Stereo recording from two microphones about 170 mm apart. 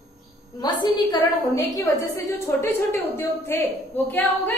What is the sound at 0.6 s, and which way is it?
A woman's voice, 25° left (ahead or behind).